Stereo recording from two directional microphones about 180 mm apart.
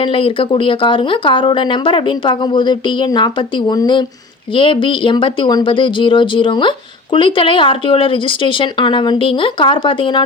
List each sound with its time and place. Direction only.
0.0 s speech: 30° left (ahead or behind)